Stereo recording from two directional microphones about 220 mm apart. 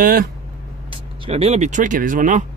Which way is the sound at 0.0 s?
40° right (ahead or behind).